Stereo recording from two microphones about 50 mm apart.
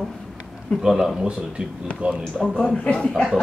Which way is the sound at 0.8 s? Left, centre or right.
Centre.